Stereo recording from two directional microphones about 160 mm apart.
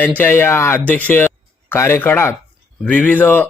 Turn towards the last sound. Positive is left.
turn(degrees=10)  # may be behind; listen again after turning